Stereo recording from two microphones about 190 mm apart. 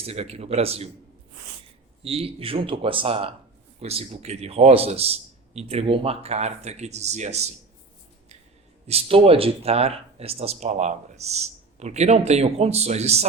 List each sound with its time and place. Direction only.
0.0 s speech: 35° right (ahead or behind)
2.0 s speech: 30° right (ahead or behind)
8.9 s speech: 30° right (ahead or behind)